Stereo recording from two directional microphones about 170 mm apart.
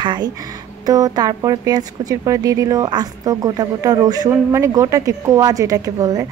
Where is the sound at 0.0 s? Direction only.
25° right (ahead or behind).